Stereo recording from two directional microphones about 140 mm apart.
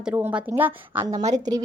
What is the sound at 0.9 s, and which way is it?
Speech, 30° right (ahead or behind).